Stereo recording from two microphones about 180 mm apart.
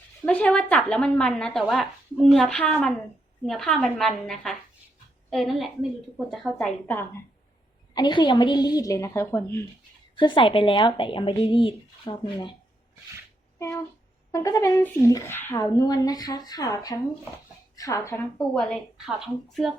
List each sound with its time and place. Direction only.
0.3 s a woman's voice: 5° left (ahead or behind)
7.9 s speech: 25° left (ahead or behind)
10.2 s speech: 25° left (ahead or behind)
13.6 s speech: 15° left (ahead or behind)
18.3 s a woman's voice: 5° left (ahead or behind)